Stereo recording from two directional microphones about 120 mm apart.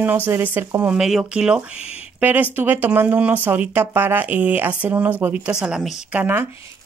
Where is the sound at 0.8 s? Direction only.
5° right (ahead or behind).